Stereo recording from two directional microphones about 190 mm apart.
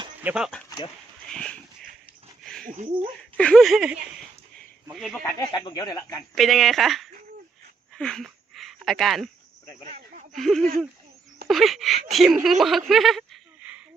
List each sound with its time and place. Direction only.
0.2 s speech: 5° right (ahead or behind)
1.3 s speech: 5° left (ahead or behind)
2.4 s a sound: 5° left (ahead or behind)
2.6 s speech: 40° right (ahead or behind)
3.3 s speech: 5° left (ahead or behind)
4.9 s speech: centre (ahead or behind)
5.2 s speech: 20° left (ahead or behind)
6.3 s speech: centre (ahead or behind)
7.9 s a sound: 5° left (ahead or behind)
10.3 s speech: centre (ahead or behind)
12.9 s a sound: centre (ahead or behind)